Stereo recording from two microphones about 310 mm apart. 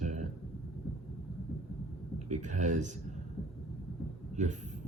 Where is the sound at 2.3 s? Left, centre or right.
Right.